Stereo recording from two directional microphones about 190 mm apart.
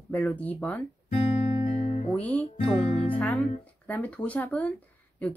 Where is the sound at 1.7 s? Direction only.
35° left (ahead or behind).